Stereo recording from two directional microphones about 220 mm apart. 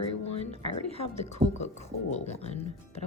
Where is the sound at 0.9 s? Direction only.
30° left (ahead or behind).